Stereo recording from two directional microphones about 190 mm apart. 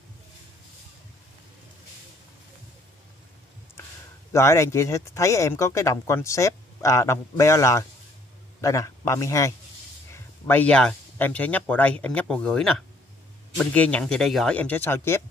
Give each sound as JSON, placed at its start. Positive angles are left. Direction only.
{"t": 4.3, "sound": "a man's voice", "side_deg": 15}